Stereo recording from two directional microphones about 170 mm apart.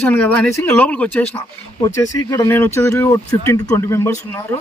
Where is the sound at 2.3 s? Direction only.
15° left (ahead or behind).